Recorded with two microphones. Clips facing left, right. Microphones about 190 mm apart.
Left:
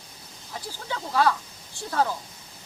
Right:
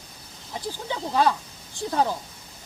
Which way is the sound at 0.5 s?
20° right (ahead or behind).